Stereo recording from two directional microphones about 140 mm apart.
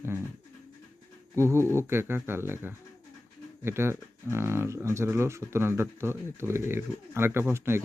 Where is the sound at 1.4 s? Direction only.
20° right (ahead or behind).